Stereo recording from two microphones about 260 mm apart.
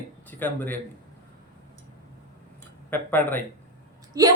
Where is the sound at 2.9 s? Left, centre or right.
Centre.